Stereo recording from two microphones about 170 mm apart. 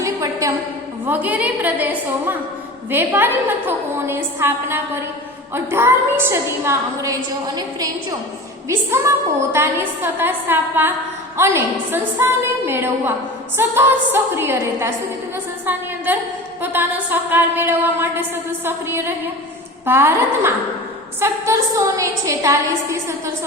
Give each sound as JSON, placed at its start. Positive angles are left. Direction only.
{"t": 0.0, "sound": "a sound", "side_deg": -20}
{"t": 1.0, "sound": "a woman's voice", "side_deg": -10}
{"t": 16.6, "sound": "a woman's voice", "side_deg": -10}